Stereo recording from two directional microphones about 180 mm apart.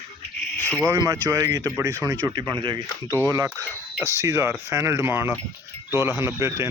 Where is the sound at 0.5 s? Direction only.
10° left (ahead or behind).